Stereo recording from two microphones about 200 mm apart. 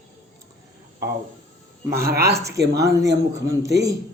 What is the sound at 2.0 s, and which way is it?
Speech, 50° right (ahead or behind).